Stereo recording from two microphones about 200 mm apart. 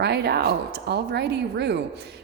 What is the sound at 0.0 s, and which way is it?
A woman's voice, 55° right (ahead or behind).